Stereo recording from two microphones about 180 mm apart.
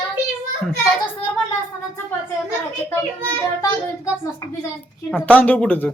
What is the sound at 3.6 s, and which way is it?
Speech, 15° left (ahead or behind).